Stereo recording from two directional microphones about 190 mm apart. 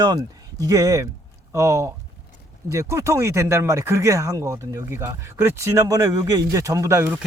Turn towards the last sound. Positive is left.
turn(degrees=-10)  # may be behind; listen again after turning